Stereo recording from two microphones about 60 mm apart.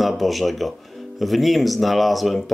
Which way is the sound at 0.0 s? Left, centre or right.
Centre.